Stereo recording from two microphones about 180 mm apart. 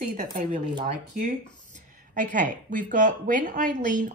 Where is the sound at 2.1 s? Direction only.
45° right (ahead or behind).